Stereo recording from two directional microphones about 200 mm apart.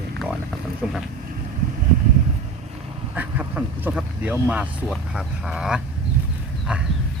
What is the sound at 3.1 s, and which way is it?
Speech, 5° right (ahead or behind).